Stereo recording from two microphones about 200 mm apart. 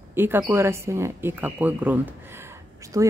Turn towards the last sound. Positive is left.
turn(degrees=-15)  # may be behind; listen again after turning